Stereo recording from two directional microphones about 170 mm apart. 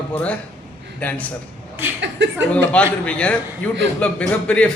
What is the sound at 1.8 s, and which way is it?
Speech, 10° right (ahead or behind).